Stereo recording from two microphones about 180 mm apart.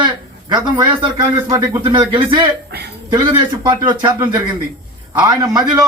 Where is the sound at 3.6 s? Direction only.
25° right (ahead or behind).